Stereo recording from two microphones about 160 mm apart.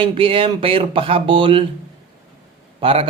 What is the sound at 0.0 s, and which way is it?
Speech, 35° right (ahead or behind).